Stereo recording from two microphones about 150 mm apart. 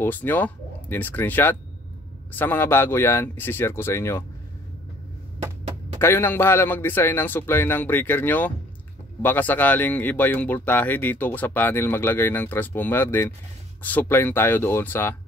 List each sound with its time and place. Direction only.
0.0 s speech: 15° left (ahead or behind)
5.9 s speech: 15° left (ahead or behind)